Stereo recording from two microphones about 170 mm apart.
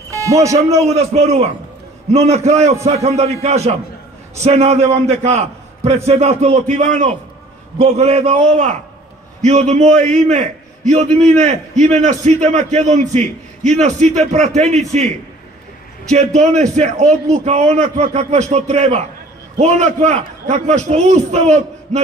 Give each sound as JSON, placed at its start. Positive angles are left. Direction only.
{"t": 0.1, "sound": "a man's voice", "side_deg": -20}
{"t": 0.6, "sound": "a man's voice", "side_deg": -40}
{"t": 9.4, "sound": "a man's voice", "side_deg": -45}
{"t": 16.3, "sound": "a man's voice", "side_deg": -45}